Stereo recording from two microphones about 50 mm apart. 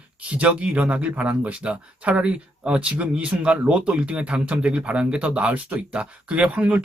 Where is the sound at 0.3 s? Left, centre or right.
Right.